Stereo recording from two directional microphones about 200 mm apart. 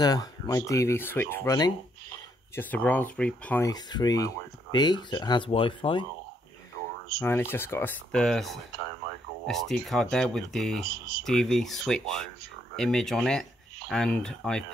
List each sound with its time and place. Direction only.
0.0 s speech: 20° left (ahead or behind)
7.2 s speech: 10° left (ahead or behind)